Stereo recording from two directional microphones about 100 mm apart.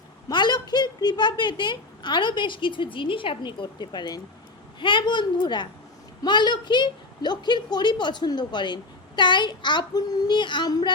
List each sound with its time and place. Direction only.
0.3 s a woman's voice: 45° left (ahead or behind)